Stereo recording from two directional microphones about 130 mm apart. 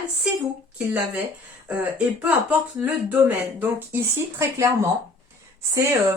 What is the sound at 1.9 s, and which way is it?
Speech, 10° right (ahead or behind).